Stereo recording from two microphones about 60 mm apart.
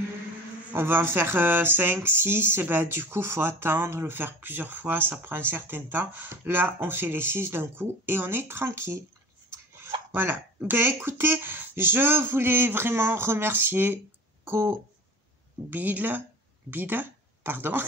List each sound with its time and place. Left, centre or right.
0.7 s speech: right
9.8 s a sound: right
10.7 s speech: right
14.4 s speech: right
15.7 s speech: right